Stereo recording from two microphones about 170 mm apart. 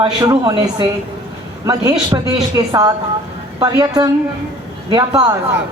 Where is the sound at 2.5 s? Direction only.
25° right (ahead or behind).